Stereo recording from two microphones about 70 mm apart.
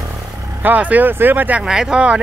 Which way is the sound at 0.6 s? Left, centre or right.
Right.